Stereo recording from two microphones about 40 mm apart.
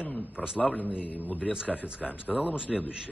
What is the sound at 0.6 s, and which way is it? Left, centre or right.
A man's voice, left.